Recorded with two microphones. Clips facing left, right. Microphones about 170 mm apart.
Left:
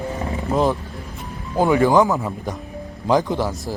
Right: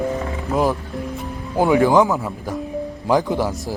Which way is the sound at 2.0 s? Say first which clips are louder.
Even; centre (ahead or behind).